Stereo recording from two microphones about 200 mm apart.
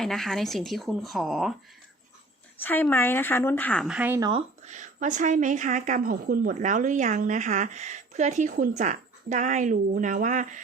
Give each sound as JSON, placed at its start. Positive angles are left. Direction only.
{"t": 0.0, "sound": "a woman's voice", "side_deg": 0}
{"t": 2.6, "sound": "a woman's voice", "side_deg": 10}
{"t": 3.9, "sound": "speech", "side_deg": -10}
{"t": 4.3, "sound": "speech", "side_deg": -30}